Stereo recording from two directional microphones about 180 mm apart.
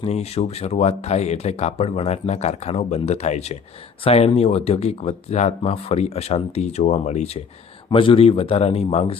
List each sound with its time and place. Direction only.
0.0 s speech: 35° left (ahead or behind)